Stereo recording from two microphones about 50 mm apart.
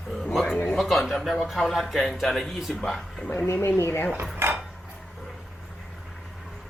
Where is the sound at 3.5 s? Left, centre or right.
Left.